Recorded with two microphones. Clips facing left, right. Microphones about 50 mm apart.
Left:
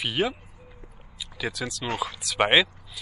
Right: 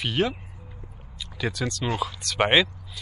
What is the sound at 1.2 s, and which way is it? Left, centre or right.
Speech, centre.